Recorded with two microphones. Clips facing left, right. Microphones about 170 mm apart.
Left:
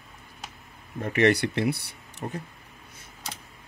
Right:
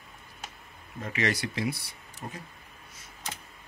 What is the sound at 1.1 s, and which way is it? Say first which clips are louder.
Speech: left 8 dB; 60° left (ahead or behind).